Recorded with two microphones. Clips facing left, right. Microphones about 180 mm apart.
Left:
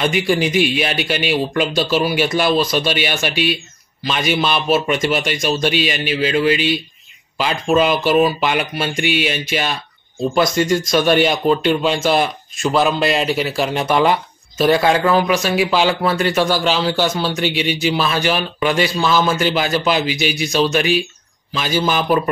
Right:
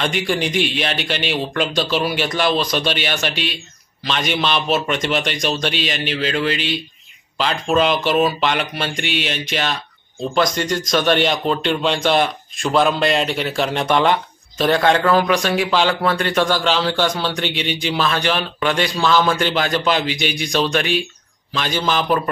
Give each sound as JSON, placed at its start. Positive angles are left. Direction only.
{"t": 0.0, "sound": "speech", "side_deg": 5}